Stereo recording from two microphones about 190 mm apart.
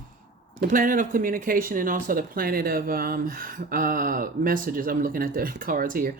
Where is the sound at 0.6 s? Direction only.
45° right (ahead or behind).